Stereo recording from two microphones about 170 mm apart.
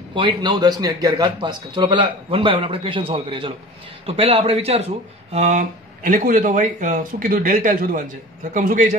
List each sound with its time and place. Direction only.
0.1 s a man's voice: 30° right (ahead or behind); by 8.9 s 45° right (ahead or behind)